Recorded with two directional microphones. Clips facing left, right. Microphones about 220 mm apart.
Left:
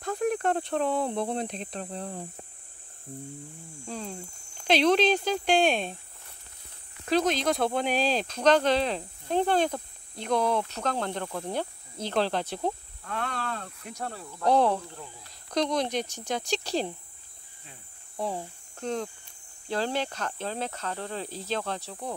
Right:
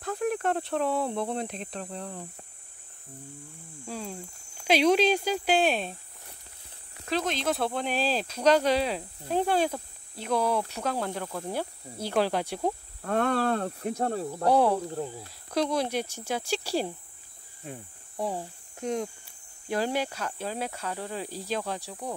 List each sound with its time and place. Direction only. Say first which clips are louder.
0.0 s speech: left 1 dB; centre (ahead or behind)
1.0 s speech: left 1 dB; 25° left (ahead or behind)
1.4 s speech: left 1 dB; centre (ahead or behind)
1.8 s cricket: left 2 dB; 30° left (ahead or behind)
3.8 s speech: even; 5° right (ahead or behind)
7.1 s speech: left 4 dB; centre (ahead or behind)
13.0 s speech: right 9 dB; 45° right (ahead or behind)
14.4 s speech: even; 10° right (ahead or behind)
14.9 s speech: right 11 dB; 40° right (ahead or behind)
15.5 s speech: even; 5° right (ahead or behind)
17.6 s speech: right 13 dB; 50° right (ahead or behind)
18.1 s speech: right 1 dB; 10° right (ahead or behind)